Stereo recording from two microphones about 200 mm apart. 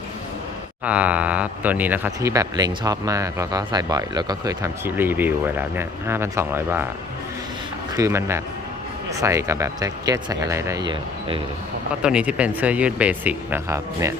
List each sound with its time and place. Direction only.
0.9 s speech: 5° right (ahead or behind)
7.9 s speech: 15° right (ahead or behind)
12.0 s speech: 5° right (ahead or behind)